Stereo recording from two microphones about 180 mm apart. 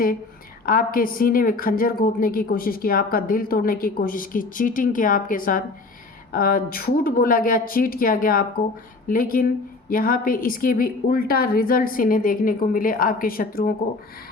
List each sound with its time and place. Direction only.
0.6 s a woman's voice: 50° left (ahead or behind)